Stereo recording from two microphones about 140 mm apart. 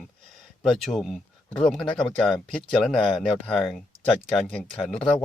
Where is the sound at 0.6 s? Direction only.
Centre (ahead or behind).